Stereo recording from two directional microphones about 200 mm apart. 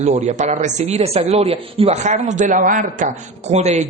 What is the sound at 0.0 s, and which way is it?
Speech, 35° right (ahead or behind).